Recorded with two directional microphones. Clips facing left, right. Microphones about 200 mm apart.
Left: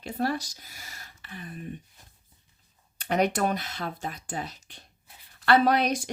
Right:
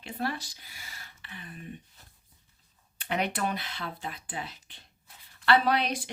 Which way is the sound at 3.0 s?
40° left (ahead or behind).